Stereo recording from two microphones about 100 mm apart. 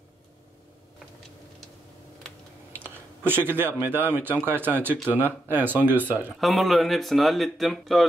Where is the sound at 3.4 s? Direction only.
20° right (ahead or behind).